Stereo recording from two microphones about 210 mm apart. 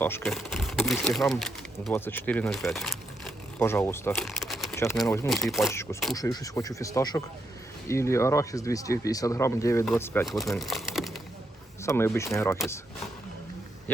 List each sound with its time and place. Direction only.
0.0 s speech: 5° left (ahead or behind)
4.7 s a sound: 10° left (ahead or behind)
5.5 s speech: centre (ahead or behind)
6.1 s speech: 15° left (ahead or behind)
10.2 s speech: centre (ahead or behind)
10.6 s a sound: centre (ahead or behind)
11.8 s speech: 15° left (ahead or behind)